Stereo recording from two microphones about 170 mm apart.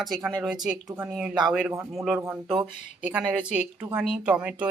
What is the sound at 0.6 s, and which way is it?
Speech, 10° right (ahead or behind).